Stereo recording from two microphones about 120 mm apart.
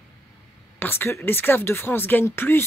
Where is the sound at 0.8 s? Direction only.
20° left (ahead or behind).